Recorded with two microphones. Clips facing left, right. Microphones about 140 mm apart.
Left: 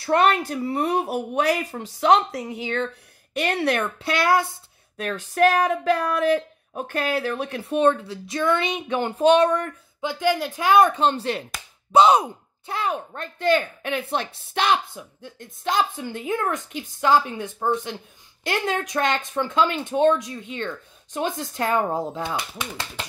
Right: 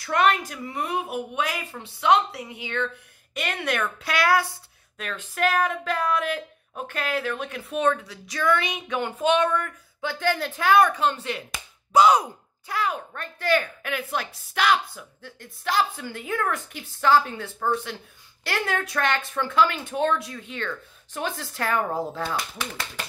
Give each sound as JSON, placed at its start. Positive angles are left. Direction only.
{"t": 0.0, "sound": "speech", "side_deg": 30}
{"t": 4.9, "sound": "speech", "side_deg": 35}
{"t": 10.0, "sound": "speech", "side_deg": 15}